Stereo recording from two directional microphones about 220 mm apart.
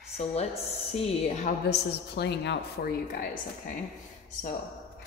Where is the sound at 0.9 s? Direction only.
30° left (ahead or behind).